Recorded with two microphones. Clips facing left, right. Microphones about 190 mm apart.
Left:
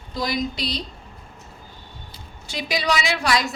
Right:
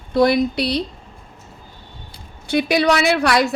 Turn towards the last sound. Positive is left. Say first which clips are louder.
# right 6 dB
turn(degrees=-60)  # may be behind; listen again after turning